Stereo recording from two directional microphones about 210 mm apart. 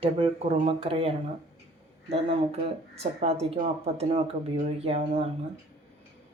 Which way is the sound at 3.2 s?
30° right (ahead or behind).